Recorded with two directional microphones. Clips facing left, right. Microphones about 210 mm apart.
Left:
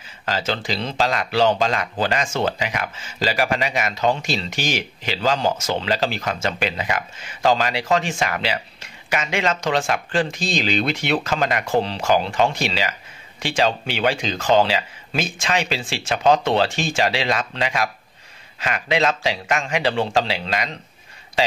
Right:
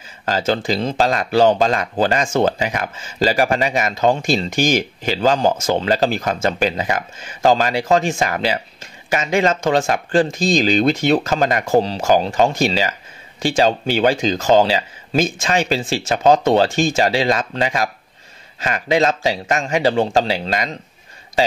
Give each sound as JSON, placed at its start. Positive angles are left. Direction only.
{"t": 0.2, "sound": "a man's voice", "side_deg": -45}